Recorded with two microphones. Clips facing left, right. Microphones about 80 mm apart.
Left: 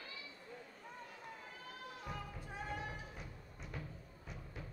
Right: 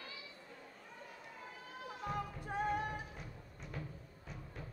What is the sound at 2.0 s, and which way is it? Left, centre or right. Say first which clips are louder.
Music: right 9 dB; right.